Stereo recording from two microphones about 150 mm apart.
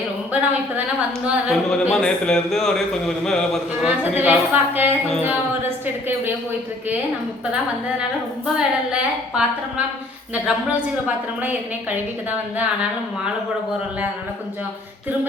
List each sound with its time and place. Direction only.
1.2 s a woman's voice: 10° right (ahead or behind)
1.9 s a man's voice: 5° left (ahead or behind)
3.8 s a woman's voice: 10° right (ahead or behind)
8.5 s a woman's voice: 5° right (ahead or behind)